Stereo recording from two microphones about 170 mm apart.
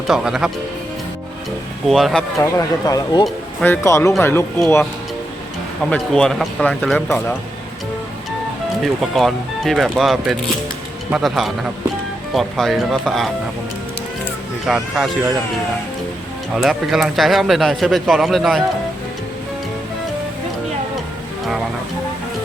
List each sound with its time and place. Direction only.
0.1 s speech: centre (ahead or behind)
1.9 s speech: centre (ahead or behind)
2.4 s speech: 20° left (ahead or behind)
3.2 s speech: 10° left (ahead or behind)
5.9 s speech: 5° left (ahead or behind)
8.8 s speech: centre (ahead or behind)
14.7 s speech: 5° right (ahead or behind)
16.6 s speech: centre (ahead or behind)